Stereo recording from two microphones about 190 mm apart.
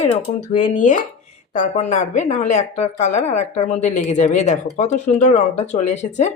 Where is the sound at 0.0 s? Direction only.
35° left (ahead or behind).